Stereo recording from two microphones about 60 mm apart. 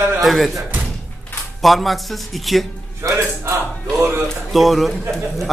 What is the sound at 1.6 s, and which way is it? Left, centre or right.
A man's voice, centre.